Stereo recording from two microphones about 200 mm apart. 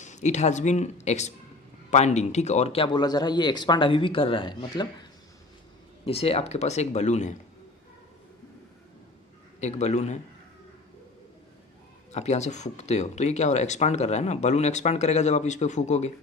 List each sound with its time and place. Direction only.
0.0 s speech: 35° left (ahead or behind)
6.1 s speech: 30° left (ahead or behind)
9.6 s speech: 35° left (ahead or behind)
12.1 s speech: 35° left (ahead or behind)